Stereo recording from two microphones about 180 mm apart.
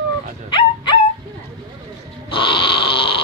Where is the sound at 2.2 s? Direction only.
30° left (ahead or behind).